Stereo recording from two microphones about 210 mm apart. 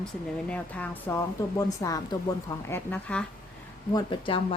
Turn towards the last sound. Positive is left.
turn(degrees=25)  # may be behind; listen again after turning